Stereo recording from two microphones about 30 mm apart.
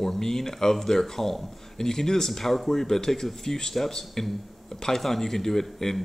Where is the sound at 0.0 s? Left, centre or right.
Centre.